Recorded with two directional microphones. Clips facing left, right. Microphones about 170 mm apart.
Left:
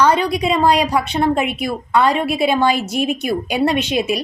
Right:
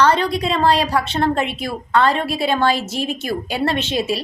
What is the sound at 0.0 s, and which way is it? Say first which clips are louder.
A woman's voice: left 1 dB; 10° left (ahead or behind).